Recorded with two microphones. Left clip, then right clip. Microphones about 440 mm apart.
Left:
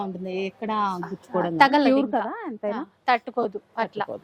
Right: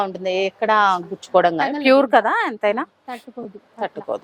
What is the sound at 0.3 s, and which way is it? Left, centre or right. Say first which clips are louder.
Speech: right 11 dB; right.